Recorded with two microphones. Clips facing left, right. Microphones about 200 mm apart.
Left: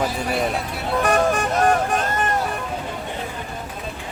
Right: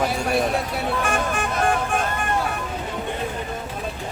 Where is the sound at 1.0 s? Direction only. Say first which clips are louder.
Left 10 dB; 40° left (ahead or behind).